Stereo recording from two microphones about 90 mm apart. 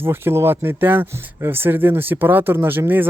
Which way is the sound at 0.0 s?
25° right (ahead or behind).